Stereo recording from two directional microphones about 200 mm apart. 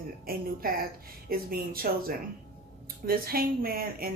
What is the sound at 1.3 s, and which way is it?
Speech, 50° right (ahead or behind).